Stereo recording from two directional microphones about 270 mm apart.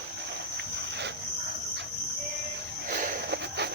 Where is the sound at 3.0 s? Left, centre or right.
Right.